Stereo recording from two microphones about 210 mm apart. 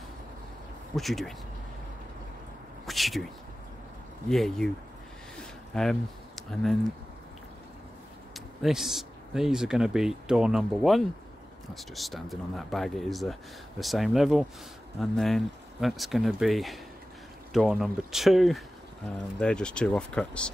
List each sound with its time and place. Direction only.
0.9 s speech: centre (ahead or behind)
2.9 s a sound: centre (ahead or behind)
4.3 s speech: centre (ahead or behind)
8.6 s speech: centre (ahead or behind)